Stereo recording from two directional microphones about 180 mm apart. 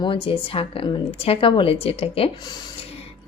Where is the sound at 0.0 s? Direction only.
30° left (ahead or behind).